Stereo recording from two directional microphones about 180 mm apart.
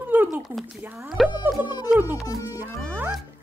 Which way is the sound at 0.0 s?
10° right (ahead or behind).